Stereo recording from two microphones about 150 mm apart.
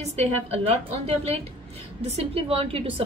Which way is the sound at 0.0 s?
45° right (ahead or behind).